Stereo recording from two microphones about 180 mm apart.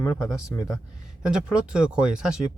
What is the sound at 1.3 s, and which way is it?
Speech, 5° right (ahead or behind).